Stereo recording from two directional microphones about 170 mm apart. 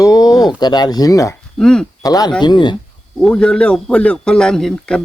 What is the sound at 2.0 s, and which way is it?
Speech, 20° left (ahead or behind).